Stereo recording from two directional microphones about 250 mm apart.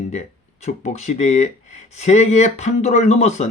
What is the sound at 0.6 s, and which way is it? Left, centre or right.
Speech, left.